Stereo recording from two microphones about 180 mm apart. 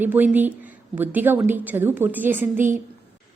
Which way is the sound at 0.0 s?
10° right (ahead or behind).